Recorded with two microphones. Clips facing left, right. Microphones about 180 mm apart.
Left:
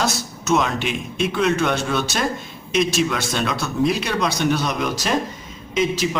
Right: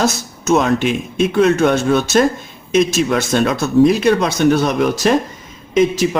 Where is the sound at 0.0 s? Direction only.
45° right (ahead or behind).